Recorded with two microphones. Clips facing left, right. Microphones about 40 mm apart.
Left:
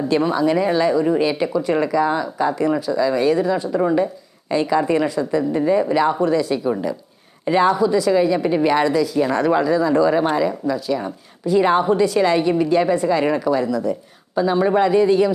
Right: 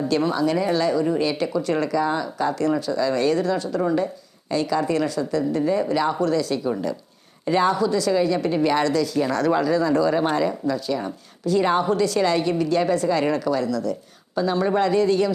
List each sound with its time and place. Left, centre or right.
0.1 s speech: centre